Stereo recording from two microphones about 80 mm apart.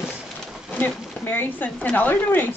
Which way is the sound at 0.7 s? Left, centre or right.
Left.